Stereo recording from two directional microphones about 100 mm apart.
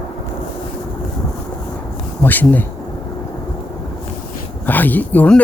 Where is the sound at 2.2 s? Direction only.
20° left (ahead or behind).